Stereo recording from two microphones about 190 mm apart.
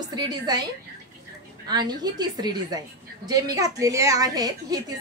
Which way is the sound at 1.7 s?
20° right (ahead or behind).